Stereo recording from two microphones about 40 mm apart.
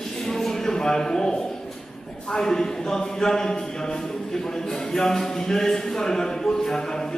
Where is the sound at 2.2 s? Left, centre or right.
Centre.